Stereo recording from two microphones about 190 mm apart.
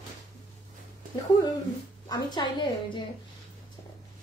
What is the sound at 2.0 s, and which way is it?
Speech, 20° left (ahead or behind).